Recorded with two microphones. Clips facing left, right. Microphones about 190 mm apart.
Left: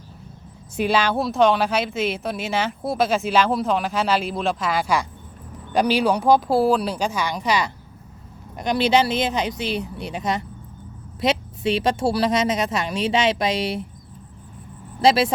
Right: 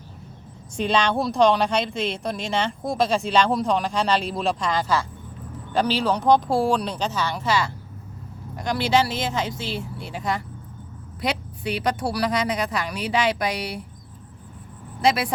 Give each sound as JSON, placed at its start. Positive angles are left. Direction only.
{"t": 0.8, "sound": "speech", "side_deg": 5}
{"t": 15.0, "sound": "speech", "side_deg": 30}